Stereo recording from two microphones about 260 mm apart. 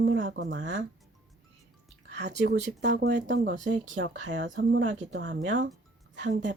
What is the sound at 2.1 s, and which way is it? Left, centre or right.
A woman's voice, right.